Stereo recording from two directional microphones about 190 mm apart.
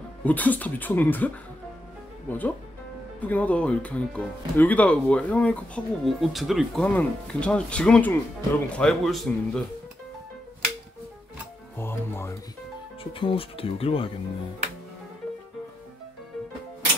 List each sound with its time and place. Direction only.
0.2 s speech: 10° left (ahead or behind)
11.7 s speech: 10° left (ahead or behind)
13.1 s speech: 25° left (ahead or behind)